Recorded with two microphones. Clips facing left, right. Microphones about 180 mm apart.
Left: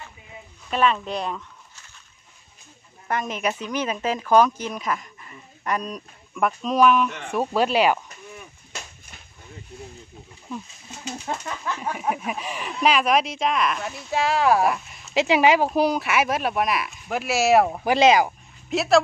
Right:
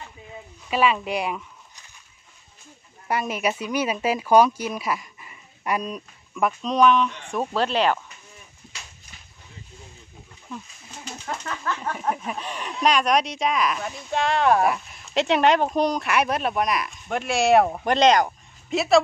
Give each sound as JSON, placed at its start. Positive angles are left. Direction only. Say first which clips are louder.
{"t": 0.7, "sound": "speech", "louder": "even", "side_deg": -5}
{"t": 3.1, "sound": "speech", "louder": "right 1 dB", "side_deg": -10}
{"t": 11.2, "sound": "speech", "louder": "right 1 dB", "side_deg": 15}